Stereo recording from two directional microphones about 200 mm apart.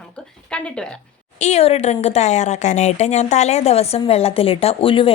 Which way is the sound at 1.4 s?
35° left (ahead or behind).